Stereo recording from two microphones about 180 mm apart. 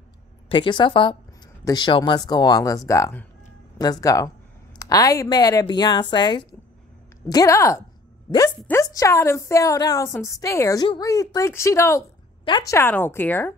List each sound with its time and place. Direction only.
0.5 s a woman's voice: 25° left (ahead or behind); by 13.6 s 10° left (ahead or behind)